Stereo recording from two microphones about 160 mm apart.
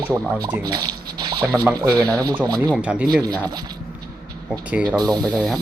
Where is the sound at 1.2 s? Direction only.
25° right (ahead or behind).